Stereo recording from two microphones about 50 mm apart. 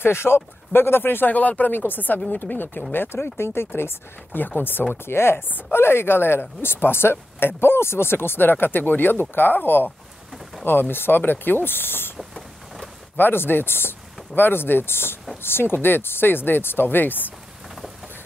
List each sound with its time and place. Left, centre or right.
0.0 s speech: left
1.3 s speech: left
1.7 s speech: left
5.0 s speech: left
12.2 s vehicle: centre
13.1 s speech: left